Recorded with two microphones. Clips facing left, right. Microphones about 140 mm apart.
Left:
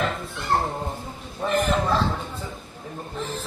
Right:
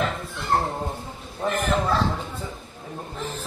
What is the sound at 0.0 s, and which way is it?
Speech, centre (ahead or behind).